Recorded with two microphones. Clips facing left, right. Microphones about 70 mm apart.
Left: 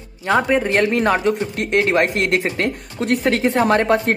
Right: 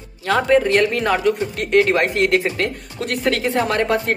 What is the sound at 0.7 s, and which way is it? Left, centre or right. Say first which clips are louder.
Speech: left 1 dB; left.